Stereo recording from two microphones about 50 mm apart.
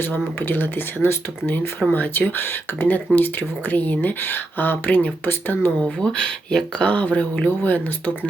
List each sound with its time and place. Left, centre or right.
0.0 s speech: left
6.0 s speech: centre
6.8 s speech: left